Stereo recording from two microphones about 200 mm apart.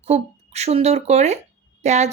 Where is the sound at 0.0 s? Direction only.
30° right (ahead or behind).